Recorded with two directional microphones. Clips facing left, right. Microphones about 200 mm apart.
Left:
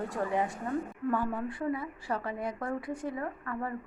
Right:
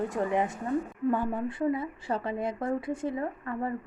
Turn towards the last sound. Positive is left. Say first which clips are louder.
# right 3 dB
turn(degrees=-25)  # may be behind; listen again after turning